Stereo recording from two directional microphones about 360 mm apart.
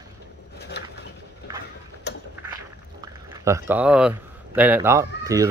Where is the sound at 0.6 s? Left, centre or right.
Left.